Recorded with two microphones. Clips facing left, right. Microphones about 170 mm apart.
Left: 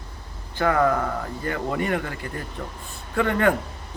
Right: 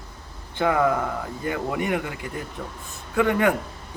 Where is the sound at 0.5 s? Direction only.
15° right (ahead or behind).